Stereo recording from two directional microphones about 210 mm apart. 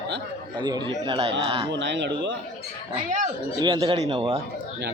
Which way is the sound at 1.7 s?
55° right (ahead or behind).